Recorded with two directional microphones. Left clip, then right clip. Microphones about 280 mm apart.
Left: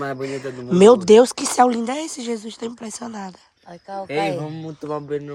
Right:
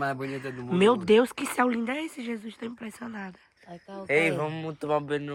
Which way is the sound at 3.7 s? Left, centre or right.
Left.